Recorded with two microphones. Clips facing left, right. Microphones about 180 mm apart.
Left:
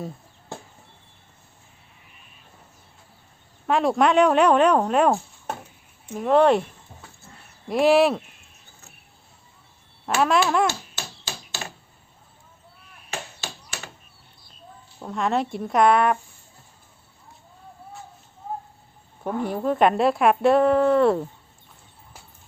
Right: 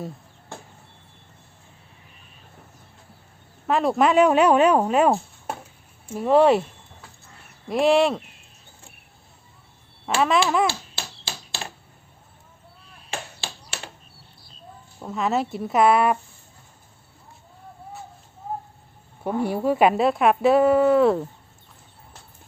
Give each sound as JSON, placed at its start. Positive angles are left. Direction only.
{"t": 3.7, "sound": "a woman's voice", "side_deg": 0}
{"t": 7.7, "sound": "a woman's voice", "side_deg": 0}
{"t": 10.2, "sound": "a woman's voice", "side_deg": 0}
{"t": 13.1, "sound": "chop", "side_deg": -30}
{"t": 15.0, "sound": "a woman's voice", "side_deg": -5}
{"t": 19.2, "sound": "a woman's voice", "side_deg": -10}